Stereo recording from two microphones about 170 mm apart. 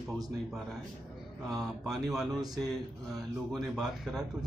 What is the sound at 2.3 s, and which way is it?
Speech, 20° right (ahead or behind).